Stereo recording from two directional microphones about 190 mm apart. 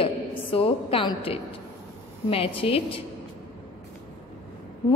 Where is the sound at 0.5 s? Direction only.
30° left (ahead or behind).